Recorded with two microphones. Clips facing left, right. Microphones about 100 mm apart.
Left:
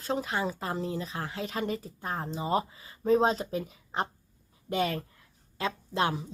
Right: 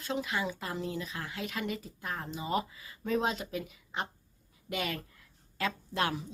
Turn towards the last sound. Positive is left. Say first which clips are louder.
# left 3 dB
turn(degrees=25)  # may be behind; listen again after turning